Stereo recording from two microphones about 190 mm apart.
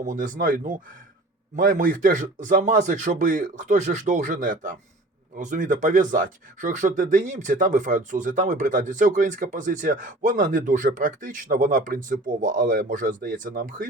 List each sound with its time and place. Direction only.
0.0 s speech: 45° right (ahead or behind)